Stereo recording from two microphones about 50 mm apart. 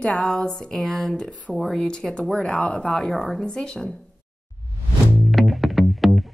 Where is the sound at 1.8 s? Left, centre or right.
Centre.